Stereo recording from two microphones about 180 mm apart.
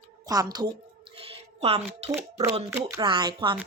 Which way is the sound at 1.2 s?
30° right (ahead or behind).